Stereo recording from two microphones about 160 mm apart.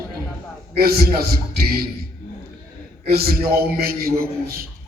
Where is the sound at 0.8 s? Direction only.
70° right (ahead or behind).